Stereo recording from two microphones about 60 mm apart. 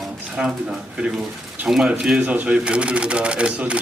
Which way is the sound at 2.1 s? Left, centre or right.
Right.